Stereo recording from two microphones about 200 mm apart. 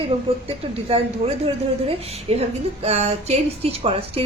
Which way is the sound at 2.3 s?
30° right (ahead or behind).